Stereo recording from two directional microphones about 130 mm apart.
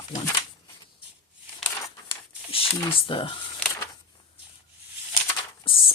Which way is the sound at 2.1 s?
45° left (ahead or behind).